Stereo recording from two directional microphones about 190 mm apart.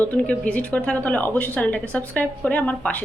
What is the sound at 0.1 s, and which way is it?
A woman's voice, 5° left (ahead or behind).